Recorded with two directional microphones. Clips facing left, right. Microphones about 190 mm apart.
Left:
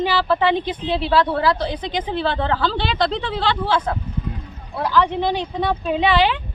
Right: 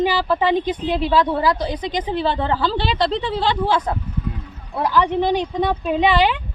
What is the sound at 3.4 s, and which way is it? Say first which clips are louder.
Speech: even; 15° right (ahead or behind).